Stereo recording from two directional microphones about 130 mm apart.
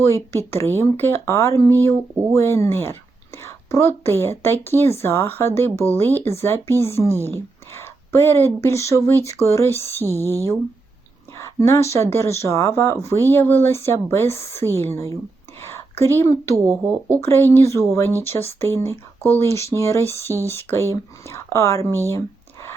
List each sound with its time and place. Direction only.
0.0 s a woman's voice: 20° left (ahead or behind)
11.3 s a woman's voice: 20° left (ahead or behind)
16.6 s speech: 20° right (ahead or behind)
17.2 s speech: 20° left (ahead or behind)
21.8 s speech: 25° right (ahead or behind)